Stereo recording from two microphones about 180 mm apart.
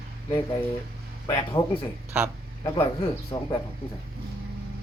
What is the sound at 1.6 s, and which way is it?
Speech, 30° left (ahead or behind).